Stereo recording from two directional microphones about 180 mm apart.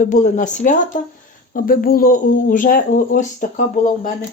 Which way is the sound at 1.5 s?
55° left (ahead or behind).